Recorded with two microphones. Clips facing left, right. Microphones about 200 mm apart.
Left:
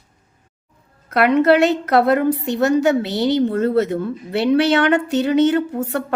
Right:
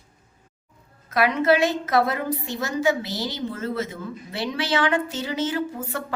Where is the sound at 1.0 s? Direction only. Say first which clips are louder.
Left 6 dB; 65° left (ahead or behind).